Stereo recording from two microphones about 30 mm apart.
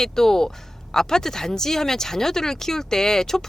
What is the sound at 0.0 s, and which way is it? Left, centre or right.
Speech, centre.